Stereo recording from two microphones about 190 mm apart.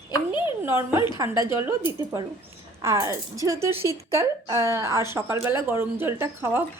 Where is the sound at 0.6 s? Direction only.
10° right (ahead or behind).